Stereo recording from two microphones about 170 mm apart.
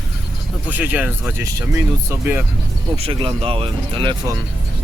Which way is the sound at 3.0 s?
30° right (ahead or behind).